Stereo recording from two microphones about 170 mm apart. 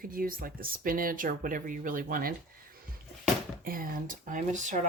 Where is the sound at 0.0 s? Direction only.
55° right (ahead or behind).